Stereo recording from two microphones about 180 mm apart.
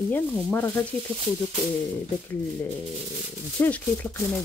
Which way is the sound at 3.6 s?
10° left (ahead or behind).